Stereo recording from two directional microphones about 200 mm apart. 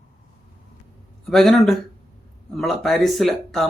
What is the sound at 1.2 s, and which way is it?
A man's voice, centre (ahead or behind).